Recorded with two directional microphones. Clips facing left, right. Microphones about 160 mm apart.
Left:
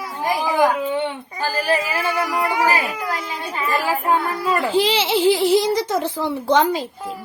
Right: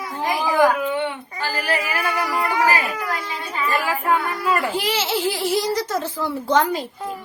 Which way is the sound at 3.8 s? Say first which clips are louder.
Left 2 dB; 30° left (ahead or behind).